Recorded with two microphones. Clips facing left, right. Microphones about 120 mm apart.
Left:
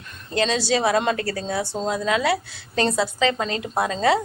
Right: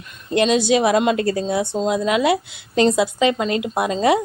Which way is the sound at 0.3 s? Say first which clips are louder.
Right 5 dB; 20° right (ahead or behind).